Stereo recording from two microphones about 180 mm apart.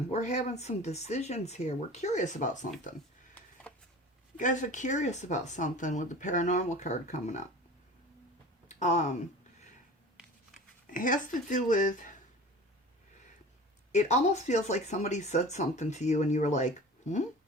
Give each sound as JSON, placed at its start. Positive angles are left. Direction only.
{"t": 0.1, "sound": "speech", "side_deg": 40}
{"t": 4.4, "sound": "speech", "side_deg": 45}
{"t": 8.6, "sound": "speech", "side_deg": 40}
{"t": 10.9, "sound": "speech", "side_deg": 45}
{"t": 13.9, "sound": "speech", "side_deg": 40}